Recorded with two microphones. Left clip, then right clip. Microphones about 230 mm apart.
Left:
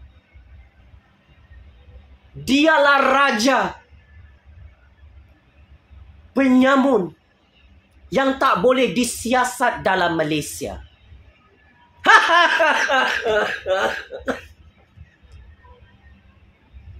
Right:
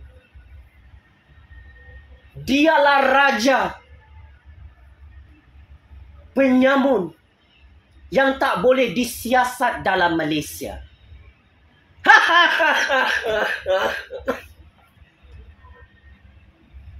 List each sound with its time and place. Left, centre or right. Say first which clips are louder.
2.4 s speech: left 1 dB; left
6.3 s speech: even; left
8.1 s speech: left 1 dB; centre
12.0 s speech: even; centre